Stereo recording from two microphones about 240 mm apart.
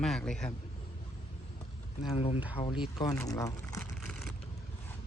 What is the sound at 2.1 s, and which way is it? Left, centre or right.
Speech, left.